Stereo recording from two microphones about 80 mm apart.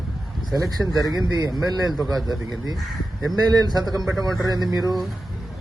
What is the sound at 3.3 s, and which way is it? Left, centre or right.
A man's voice, right.